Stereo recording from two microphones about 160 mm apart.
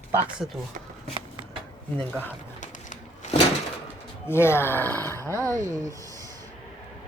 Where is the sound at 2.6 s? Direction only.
50° left (ahead or behind).